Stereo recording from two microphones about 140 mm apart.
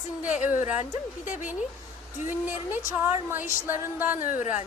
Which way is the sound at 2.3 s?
15° right (ahead or behind).